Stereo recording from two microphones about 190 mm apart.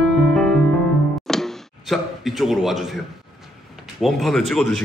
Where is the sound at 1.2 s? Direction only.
Centre (ahead or behind).